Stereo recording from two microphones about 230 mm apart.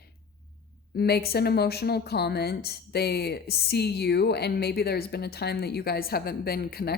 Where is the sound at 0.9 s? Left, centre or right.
Left.